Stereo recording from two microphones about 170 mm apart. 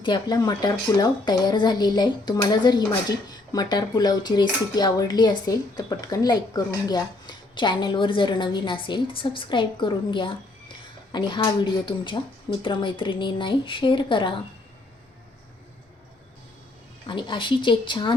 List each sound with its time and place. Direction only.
0.0 s speech: 25° left (ahead or behind)
17.1 s speech: 30° left (ahead or behind)